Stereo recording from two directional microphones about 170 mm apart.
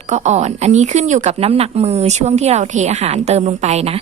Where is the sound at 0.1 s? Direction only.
45° right (ahead or behind).